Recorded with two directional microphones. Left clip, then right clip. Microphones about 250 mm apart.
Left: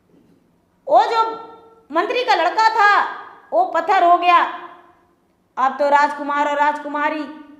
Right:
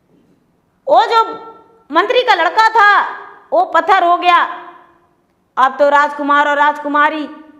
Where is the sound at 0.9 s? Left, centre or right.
Right.